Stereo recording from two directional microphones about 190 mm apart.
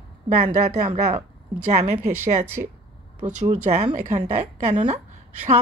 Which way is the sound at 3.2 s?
30° right (ahead or behind).